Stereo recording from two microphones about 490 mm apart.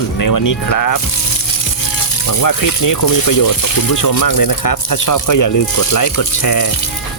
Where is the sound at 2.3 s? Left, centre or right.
Left.